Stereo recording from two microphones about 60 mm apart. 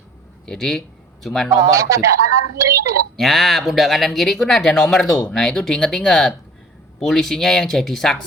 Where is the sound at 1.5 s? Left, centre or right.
Right.